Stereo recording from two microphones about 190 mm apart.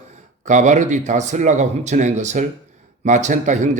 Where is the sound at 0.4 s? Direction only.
40° right (ahead or behind).